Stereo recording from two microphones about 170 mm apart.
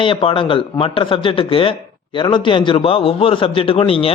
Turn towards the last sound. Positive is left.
turn(degrees=35)  # may be behind; listen again after turning